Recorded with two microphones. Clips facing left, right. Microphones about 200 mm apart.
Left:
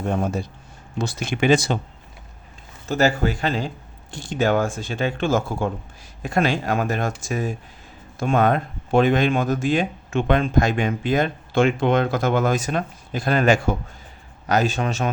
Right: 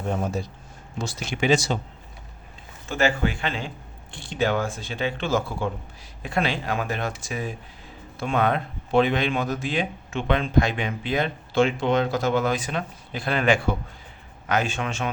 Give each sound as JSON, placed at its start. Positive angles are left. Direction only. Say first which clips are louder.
{"t": 0.9, "sound": "speech", "louder": "left 4 dB", "side_deg": 55}
{"t": 2.9, "sound": "speech", "louder": "left 3 dB", "side_deg": 40}